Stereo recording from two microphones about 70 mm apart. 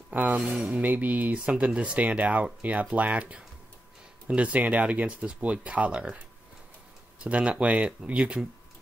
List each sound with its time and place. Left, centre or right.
0.1 s speech: right
7.2 s speech: centre